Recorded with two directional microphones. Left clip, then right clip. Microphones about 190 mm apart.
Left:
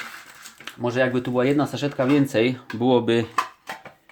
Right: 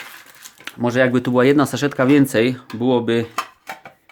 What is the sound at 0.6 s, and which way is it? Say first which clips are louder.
Speech: right 5 dB; 50° right (ahead or behind).